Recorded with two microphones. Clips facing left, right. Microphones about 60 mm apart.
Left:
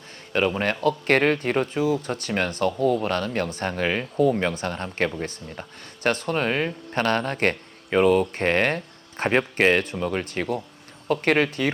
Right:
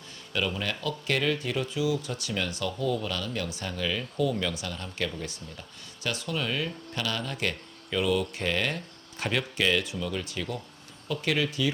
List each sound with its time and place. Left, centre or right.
0.3 s speech: left